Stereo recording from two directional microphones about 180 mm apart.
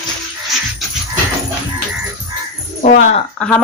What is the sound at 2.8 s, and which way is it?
Speech, 45° left (ahead or behind).